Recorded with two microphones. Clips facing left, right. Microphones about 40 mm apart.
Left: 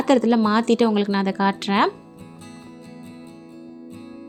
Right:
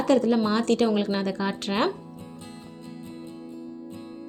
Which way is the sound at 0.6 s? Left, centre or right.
Left.